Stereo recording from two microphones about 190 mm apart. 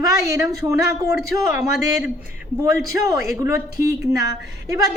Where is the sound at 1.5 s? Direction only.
5° right (ahead or behind).